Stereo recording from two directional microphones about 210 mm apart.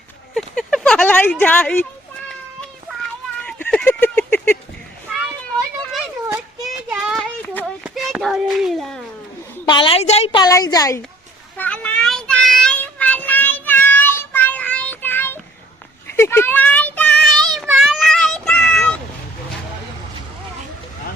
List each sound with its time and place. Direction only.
0.3 s speech: centre (ahead or behind)
3.4 s a sound: 5° left (ahead or behind)
6.6 s child singing: centre (ahead or behind)
7.9 s a child's voice: centre (ahead or behind)
9.6 s a woman's voice: 25° left (ahead or behind)
11.5 s child singing: 5° left (ahead or behind)